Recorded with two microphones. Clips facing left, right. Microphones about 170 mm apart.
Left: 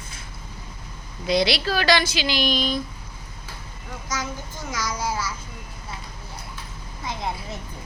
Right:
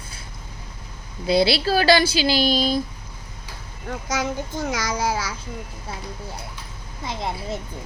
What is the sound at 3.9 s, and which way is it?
A child's voice, 65° right (ahead or behind).